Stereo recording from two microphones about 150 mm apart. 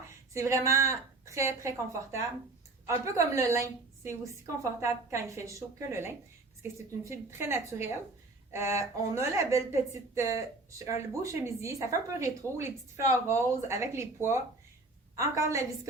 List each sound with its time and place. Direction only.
0.3 s a woman's voice: 20° right (ahead or behind)